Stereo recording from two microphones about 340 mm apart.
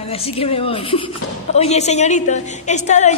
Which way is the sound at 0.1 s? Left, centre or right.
Centre.